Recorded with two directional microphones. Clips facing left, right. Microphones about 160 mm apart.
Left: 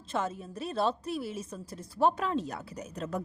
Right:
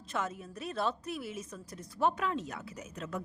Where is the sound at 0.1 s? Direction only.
30° left (ahead or behind).